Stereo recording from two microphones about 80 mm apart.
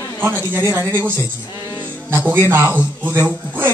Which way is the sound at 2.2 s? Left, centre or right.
Right.